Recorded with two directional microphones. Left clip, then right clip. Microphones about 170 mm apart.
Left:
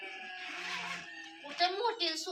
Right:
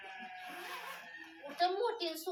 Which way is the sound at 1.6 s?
60° right (ahead or behind).